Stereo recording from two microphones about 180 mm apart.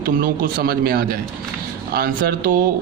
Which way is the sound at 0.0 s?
55° right (ahead or behind).